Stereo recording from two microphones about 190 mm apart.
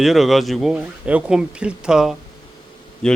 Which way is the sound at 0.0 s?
Centre (ahead or behind).